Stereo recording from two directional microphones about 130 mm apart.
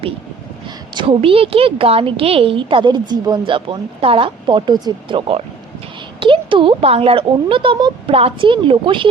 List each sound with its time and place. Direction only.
0.9 s a woman's voice: 45° right (ahead or behind)